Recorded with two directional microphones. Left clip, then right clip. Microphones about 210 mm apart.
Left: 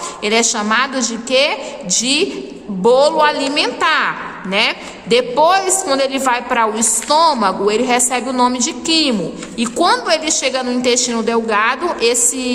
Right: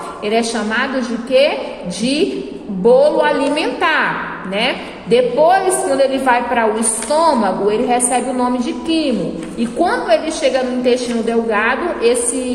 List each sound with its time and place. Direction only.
0.3 s a woman's voice: 30° left (ahead or behind)